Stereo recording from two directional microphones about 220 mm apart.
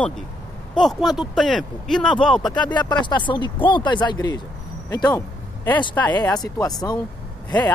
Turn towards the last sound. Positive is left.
turn(degrees=20)  # may be behind; listen again after turning